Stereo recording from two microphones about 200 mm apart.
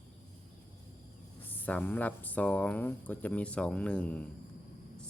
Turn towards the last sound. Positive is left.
turn(degrees=5)  # may be behind; listen again after turning